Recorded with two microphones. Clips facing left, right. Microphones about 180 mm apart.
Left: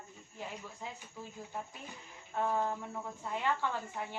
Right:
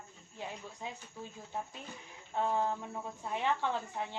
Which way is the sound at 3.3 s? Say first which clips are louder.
Right 1 dB; 20° right (ahead or behind).